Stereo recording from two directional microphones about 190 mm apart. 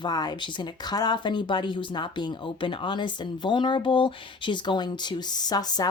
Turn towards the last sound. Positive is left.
turn(degrees=20)  # may be behind; listen again after turning